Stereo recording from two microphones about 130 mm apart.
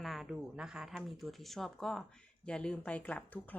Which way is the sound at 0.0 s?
Centre (ahead or behind).